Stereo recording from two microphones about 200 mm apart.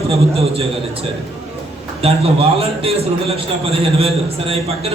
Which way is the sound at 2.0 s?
30° right (ahead or behind).